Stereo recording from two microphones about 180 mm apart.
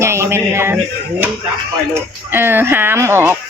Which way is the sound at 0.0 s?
15° right (ahead or behind).